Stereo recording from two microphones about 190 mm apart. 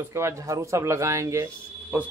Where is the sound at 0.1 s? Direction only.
15° right (ahead or behind).